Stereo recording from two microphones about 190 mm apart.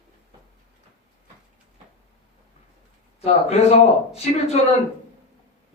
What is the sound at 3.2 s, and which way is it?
A man's voice, 35° left (ahead or behind).